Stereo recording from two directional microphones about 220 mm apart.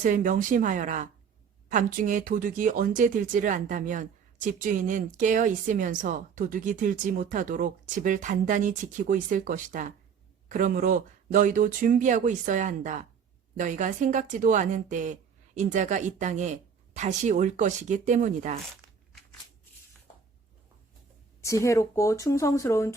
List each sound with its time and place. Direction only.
0.0 s speech: 35° right (ahead or behind)
21.4 s speech: 15° left (ahead or behind)